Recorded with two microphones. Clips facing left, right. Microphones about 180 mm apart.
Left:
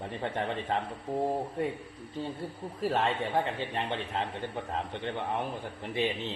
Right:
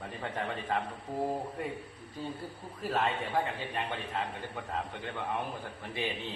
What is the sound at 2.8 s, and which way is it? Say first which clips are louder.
A man's voice: left 3 dB; 30° left (ahead or behind).